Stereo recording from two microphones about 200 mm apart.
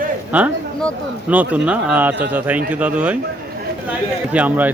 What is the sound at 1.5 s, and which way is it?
Speech, 5° right (ahead or behind).